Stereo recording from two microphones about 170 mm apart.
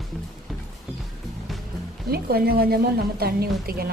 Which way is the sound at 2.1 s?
65° right (ahead or behind).